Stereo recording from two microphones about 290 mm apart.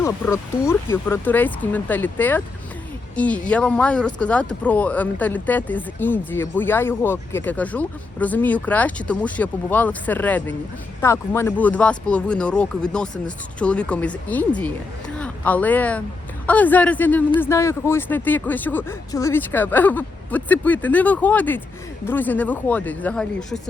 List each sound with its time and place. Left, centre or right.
0.7 s speech: centre